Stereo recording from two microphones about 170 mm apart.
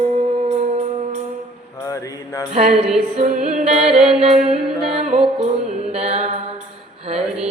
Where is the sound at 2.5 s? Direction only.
40° right (ahead or behind).